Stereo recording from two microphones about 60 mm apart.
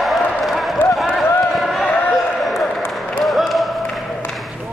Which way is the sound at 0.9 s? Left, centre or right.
Centre.